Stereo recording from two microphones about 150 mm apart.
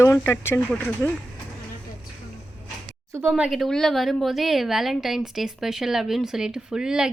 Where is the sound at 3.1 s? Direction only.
15° right (ahead or behind).